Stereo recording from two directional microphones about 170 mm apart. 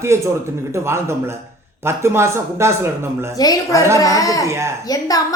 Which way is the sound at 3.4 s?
20° left (ahead or behind).